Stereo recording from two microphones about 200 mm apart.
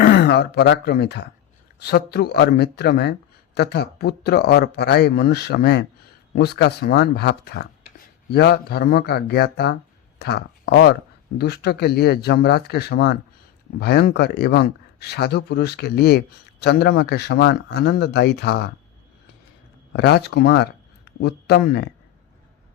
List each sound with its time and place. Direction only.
0.0 s speech: 55° left (ahead or behind)
19.9 s speech: 55° left (ahead or behind)